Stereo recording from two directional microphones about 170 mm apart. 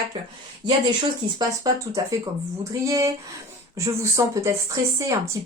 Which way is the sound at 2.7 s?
20° right (ahead or behind).